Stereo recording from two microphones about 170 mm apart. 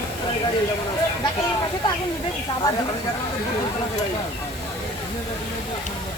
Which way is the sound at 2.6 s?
20° left (ahead or behind).